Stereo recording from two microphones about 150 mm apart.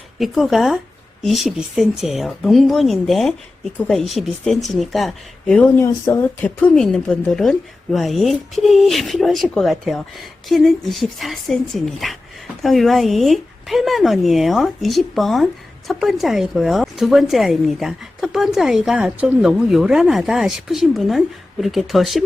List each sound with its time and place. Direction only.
0.2 s a woman's voice: centre (ahead or behind)